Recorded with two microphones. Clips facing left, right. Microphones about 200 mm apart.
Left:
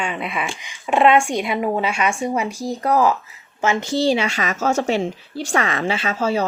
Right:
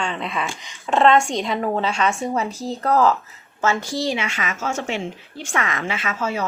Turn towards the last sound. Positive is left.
turn(degrees=30)  # may be behind; listen again after turning